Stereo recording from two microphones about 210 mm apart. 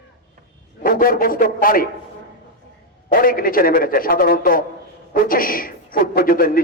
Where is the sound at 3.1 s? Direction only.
45° left (ahead or behind).